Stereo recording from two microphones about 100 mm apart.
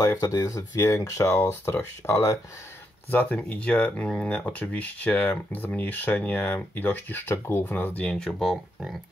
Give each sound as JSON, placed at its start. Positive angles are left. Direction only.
{"t": 0.0, "sound": "speech", "side_deg": 35}
{"t": 3.1, "sound": "speech", "side_deg": 15}